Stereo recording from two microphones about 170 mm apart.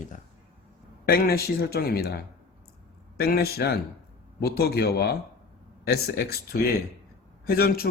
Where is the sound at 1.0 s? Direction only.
65° left (ahead or behind).